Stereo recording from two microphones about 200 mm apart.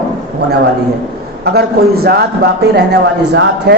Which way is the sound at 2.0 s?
55° right (ahead or behind).